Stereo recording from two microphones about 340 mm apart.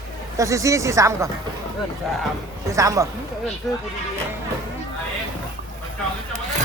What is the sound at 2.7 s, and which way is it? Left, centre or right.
Speech, centre.